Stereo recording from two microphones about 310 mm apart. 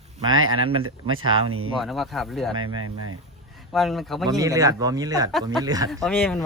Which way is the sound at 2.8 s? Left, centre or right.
Right.